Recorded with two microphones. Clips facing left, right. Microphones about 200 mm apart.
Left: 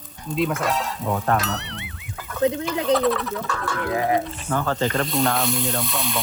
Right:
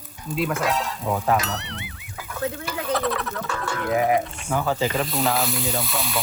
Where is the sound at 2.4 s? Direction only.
20° left (ahead or behind).